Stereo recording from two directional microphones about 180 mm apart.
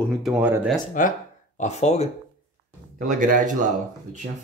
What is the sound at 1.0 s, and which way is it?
Speech, 45° left (ahead or behind).